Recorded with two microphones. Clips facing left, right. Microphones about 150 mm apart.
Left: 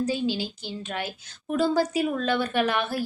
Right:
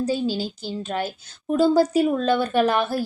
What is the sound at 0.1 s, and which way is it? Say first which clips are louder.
Speech: right 3 dB; 40° right (ahead or behind).